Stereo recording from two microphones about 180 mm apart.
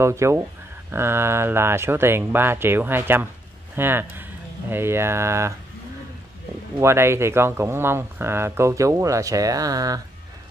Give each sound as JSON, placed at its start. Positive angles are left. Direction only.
{"t": 0.0, "sound": "speech", "side_deg": -15}
{"t": 6.8, "sound": "speech", "side_deg": -15}